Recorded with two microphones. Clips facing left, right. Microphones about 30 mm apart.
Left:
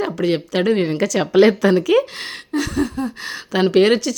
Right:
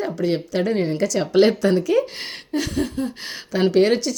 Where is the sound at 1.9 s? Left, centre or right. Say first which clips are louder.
Left 4 dB; left.